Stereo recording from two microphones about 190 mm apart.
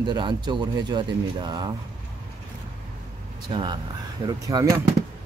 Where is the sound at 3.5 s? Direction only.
25° right (ahead or behind).